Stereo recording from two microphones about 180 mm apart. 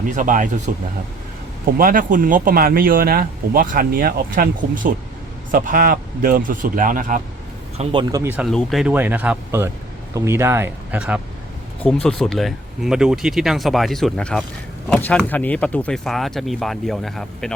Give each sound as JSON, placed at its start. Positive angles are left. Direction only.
{"t": 0.1, "sound": "speech", "side_deg": -45}
{"t": 1.8, "sound": "speech", "side_deg": -50}
{"t": 7.8, "sound": "speech", "side_deg": -35}
{"t": 8.1, "sound": "speech", "side_deg": -10}
{"t": 8.4, "sound": "speech", "side_deg": 0}
{"t": 11.8, "sound": "speech", "side_deg": 5}